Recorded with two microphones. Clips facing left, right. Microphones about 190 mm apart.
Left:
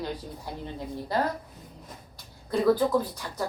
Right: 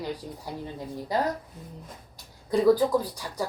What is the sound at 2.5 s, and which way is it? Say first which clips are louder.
Speech: right 2 dB; 10° right (ahead or behind).